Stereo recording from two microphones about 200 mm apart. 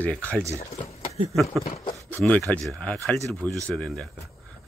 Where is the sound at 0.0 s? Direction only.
5° left (ahead or behind).